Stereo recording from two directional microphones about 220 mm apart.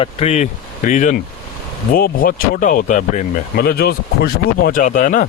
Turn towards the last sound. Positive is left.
turn(degrees=35)  # may be behind; listen again after turning